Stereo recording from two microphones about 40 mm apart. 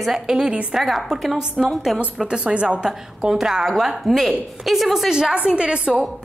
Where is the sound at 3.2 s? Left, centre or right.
Centre.